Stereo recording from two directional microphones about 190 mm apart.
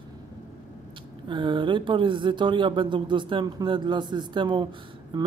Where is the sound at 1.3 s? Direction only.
25° right (ahead or behind).